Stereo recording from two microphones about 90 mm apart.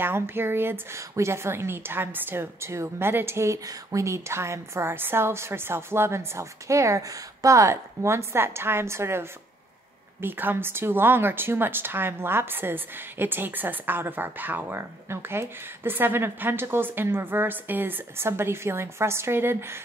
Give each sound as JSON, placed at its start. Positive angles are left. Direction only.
{"t": 0.0, "sound": "a woman's voice", "side_deg": -25}